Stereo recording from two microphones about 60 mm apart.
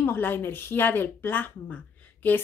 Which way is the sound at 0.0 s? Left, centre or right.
Left.